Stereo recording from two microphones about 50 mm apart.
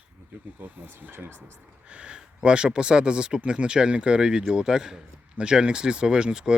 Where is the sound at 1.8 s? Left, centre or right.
Right.